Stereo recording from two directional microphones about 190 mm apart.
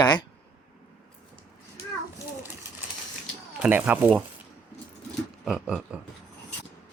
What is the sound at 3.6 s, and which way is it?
Speech, 10° right (ahead or behind).